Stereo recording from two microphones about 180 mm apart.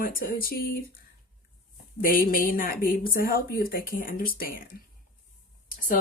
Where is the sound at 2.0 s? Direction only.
50° left (ahead or behind).